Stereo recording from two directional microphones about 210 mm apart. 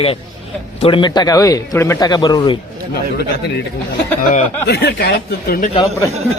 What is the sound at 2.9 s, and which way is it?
Speech, 50° left (ahead or behind).